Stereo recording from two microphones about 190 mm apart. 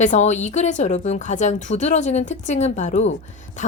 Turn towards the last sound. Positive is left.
turn(degrees=40)  # may be behind; listen again after turning